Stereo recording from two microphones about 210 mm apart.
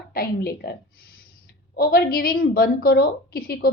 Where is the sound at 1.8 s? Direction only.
45° left (ahead or behind).